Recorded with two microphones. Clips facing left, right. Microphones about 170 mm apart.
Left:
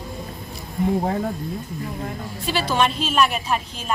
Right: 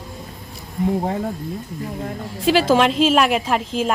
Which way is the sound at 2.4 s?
90° right.